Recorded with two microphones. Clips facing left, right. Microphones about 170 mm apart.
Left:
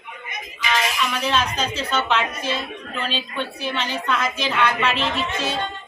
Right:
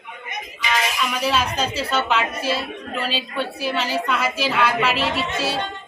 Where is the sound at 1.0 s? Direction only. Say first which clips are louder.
Right 1 dB; 10° right (ahead or behind).